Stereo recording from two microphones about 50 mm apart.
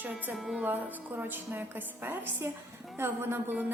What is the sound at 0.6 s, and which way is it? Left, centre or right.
Speech, right.